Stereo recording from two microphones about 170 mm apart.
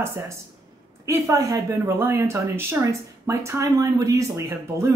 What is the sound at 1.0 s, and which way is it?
Speech, 20° right (ahead or behind).